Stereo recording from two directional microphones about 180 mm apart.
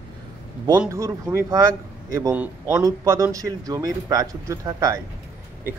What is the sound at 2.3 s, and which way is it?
Speech, 5° right (ahead or behind).